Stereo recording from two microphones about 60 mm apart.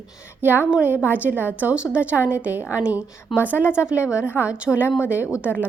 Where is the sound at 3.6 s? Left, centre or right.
Left.